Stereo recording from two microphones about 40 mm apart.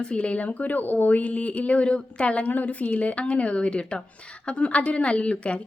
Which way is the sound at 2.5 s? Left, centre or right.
Left.